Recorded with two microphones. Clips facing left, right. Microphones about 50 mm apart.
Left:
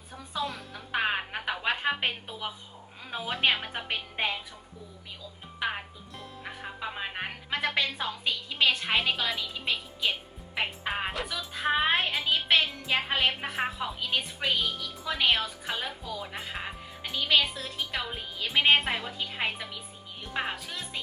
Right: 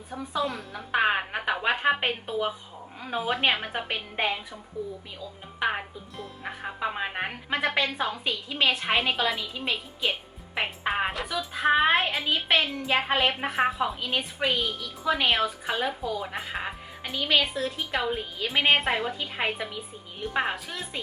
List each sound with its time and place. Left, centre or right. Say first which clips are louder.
0.2 s a woman's voice: right 4 dB; centre
5.5 s music: right 5 dB; centre
11.3 s a woman's voice: right 6 dB; centre